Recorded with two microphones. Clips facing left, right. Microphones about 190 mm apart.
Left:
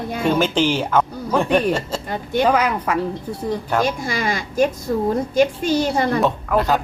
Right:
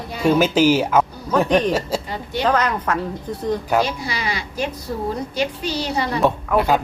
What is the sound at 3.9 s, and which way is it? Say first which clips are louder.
A woman's voice: left 4 dB; 50° left (ahead or behind).